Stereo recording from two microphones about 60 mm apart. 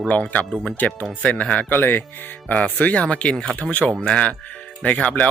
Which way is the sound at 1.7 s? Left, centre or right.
Left.